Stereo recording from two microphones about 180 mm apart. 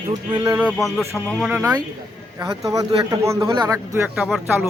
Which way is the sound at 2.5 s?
20° right (ahead or behind).